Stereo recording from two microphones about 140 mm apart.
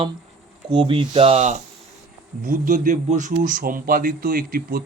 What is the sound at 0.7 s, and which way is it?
Speech, 35° right (ahead or behind).